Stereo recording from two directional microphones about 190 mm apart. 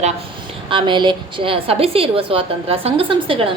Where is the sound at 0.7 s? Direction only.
25° right (ahead or behind).